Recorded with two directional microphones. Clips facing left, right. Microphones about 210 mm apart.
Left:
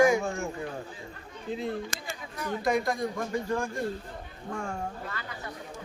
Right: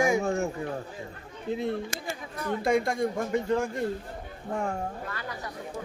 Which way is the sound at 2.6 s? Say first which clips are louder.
Right 2 dB; 25° right (ahead or behind).